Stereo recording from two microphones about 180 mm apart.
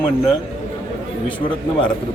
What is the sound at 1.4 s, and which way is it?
Speech, 25° left (ahead or behind).